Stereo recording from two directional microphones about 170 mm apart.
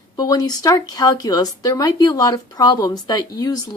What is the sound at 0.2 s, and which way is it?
Speech, 20° left (ahead or behind).